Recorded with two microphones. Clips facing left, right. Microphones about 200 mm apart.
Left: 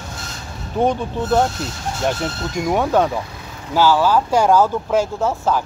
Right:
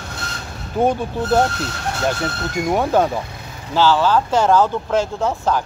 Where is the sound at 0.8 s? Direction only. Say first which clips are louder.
Right 1 dB; 5° right (ahead or behind).